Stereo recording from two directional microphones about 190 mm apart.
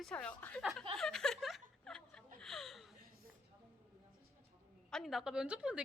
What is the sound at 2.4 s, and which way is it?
Chuckle, centre (ahead or behind).